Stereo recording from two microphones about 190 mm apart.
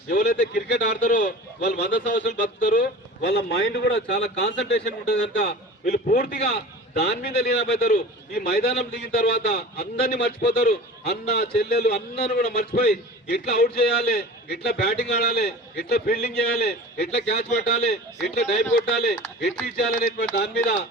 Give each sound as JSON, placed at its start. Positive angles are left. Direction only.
{"t": 0.1, "sound": "a man's voice", "side_deg": 60}
{"t": 18.9, "sound": "a man's voice", "side_deg": 60}